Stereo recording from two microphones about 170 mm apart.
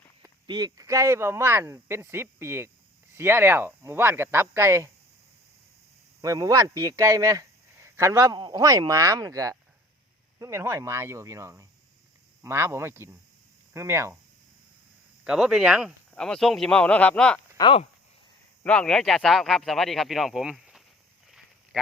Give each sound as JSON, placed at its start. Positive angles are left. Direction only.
{"t": 0.2, "sound": "speech", "side_deg": -25}
{"t": 6.2, "sound": "speech", "side_deg": -20}
{"t": 15.2, "sound": "speech", "side_deg": -5}
{"t": 17.6, "sound": "speech", "side_deg": 30}
{"t": 18.6, "sound": "speech", "side_deg": 5}
{"t": 21.2, "sound": "a sound", "side_deg": 0}